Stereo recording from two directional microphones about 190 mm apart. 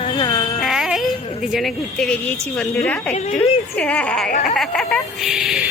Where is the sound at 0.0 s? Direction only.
25° left (ahead or behind).